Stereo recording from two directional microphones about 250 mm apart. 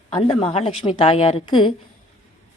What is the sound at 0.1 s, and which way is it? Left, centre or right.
A woman's voice, left.